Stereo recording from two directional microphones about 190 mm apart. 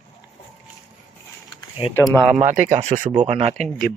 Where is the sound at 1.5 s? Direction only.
30° left (ahead or behind).